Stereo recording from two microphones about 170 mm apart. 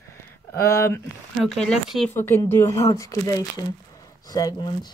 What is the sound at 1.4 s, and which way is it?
Speech, centre (ahead or behind).